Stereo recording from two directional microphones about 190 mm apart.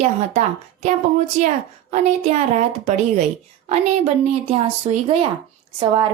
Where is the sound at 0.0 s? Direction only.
35° right (ahead or behind).